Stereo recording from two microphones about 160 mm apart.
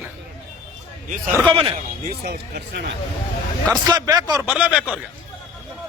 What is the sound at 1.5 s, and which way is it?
Speech, 30° right (ahead or behind).